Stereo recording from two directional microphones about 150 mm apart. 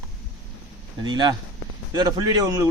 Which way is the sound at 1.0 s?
30° right (ahead or behind).